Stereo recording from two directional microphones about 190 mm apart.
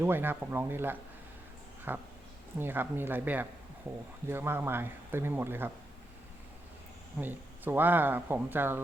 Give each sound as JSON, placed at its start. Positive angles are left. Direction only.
{"t": 0.0, "sound": "speech", "side_deg": -10}
{"t": 7.2, "sound": "speech", "side_deg": -10}